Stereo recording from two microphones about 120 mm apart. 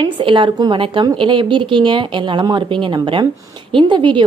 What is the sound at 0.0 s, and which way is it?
A woman's voice, 45° right (ahead or behind).